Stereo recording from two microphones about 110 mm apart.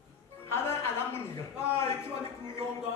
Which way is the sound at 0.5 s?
25° left (ahead or behind).